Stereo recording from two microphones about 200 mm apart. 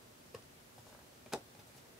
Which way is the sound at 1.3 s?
Centre (ahead or behind).